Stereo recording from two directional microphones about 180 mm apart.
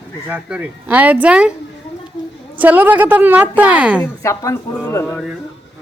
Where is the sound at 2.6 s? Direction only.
10° right (ahead or behind).